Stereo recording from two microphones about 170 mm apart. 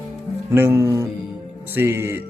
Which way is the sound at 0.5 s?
15° right (ahead or behind).